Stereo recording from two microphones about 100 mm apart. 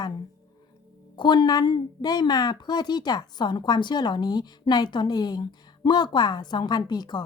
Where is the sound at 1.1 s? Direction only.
50° left (ahead or behind).